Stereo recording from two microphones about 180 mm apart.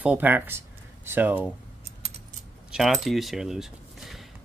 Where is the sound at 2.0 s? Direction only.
35° right (ahead or behind).